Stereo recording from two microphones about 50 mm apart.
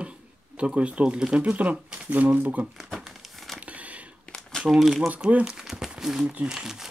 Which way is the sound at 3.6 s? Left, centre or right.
Right.